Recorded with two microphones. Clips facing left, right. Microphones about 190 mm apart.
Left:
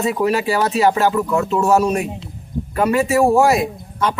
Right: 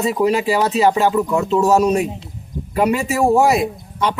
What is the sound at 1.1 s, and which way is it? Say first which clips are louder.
Speech: right 1 dB; 10° right (ahead or behind).